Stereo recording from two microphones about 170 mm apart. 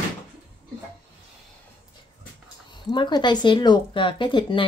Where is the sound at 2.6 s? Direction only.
25° left (ahead or behind).